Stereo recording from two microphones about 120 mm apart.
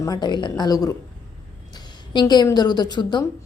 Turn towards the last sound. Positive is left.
turn(degrees=35)  # may be behind; listen again after turning